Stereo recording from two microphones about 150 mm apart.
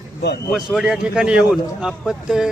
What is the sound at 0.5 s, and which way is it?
A man's voice, 5° right (ahead or behind).